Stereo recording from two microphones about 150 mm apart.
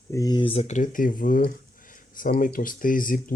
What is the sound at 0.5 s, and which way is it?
Speech, 50° left (ahead or behind).